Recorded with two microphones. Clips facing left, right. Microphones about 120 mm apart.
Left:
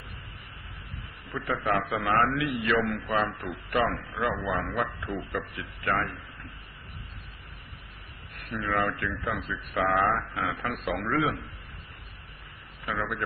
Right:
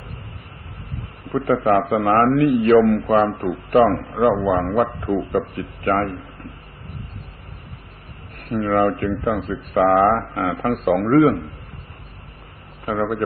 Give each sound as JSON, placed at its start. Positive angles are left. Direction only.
{"t": 0.9, "sound": "speech", "side_deg": -45}
{"t": 8.4, "sound": "speech", "side_deg": -45}
{"t": 12.8, "sound": "speech", "side_deg": -45}